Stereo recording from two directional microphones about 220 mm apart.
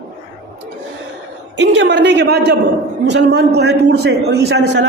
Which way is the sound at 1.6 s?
50° right (ahead or behind).